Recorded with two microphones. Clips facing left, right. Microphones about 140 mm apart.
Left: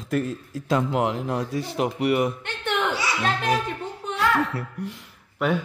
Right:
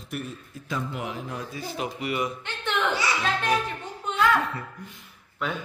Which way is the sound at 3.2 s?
40° left (ahead or behind).